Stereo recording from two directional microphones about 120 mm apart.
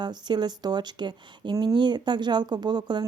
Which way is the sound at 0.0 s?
35° right (ahead or behind).